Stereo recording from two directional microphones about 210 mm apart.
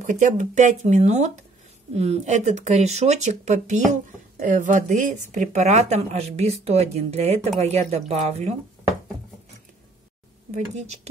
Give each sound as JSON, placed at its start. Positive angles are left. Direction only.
{"t": 0.0, "sound": "speech", "side_deg": -35}